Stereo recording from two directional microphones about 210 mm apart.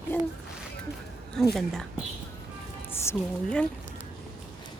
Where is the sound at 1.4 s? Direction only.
Centre (ahead or behind).